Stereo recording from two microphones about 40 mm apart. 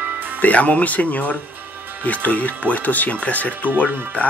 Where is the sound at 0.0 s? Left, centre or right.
Right.